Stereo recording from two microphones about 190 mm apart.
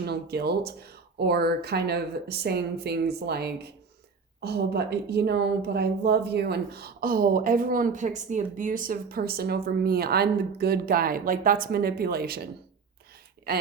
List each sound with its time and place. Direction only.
0.0 s a woman's voice: 60° right (ahead or behind)
13.5 s speech: 55° right (ahead or behind)